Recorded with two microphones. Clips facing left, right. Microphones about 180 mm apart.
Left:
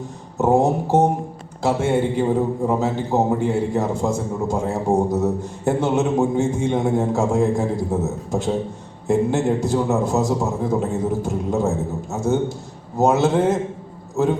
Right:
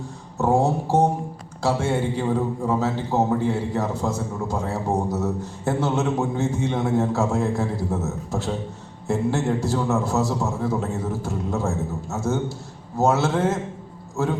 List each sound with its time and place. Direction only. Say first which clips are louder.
0.3 s a man's voice: left 3 dB; 15° left (ahead or behind)